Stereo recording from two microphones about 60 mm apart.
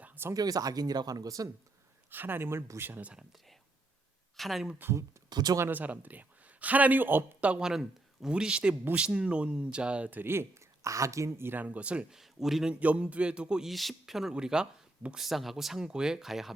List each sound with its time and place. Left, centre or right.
0.3 s speech: right
2.0 s speech: right
4.4 s speech: centre
4.9 s speech: right
5.7 s a man's voice: right
7.6 s speech: centre
10.1 s speech: right
11.5 s music: right
12.1 s speech: centre
12.7 s music: right
13.7 s speech: centre